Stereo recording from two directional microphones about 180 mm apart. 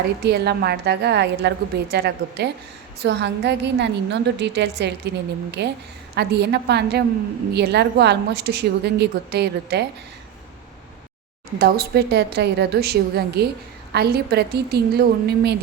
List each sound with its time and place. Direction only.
0.3 s a woman's voice: 65° right (ahead or behind)
11.6 s a woman's voice: 60° right (ahead or behind)